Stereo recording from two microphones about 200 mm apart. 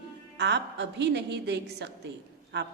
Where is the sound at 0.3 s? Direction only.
60° right (ahead or behind).